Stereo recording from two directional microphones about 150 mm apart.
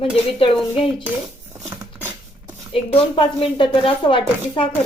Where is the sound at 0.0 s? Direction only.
40° left (ahead or behind).